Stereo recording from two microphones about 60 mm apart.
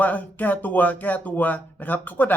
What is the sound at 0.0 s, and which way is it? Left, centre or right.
Speech, left.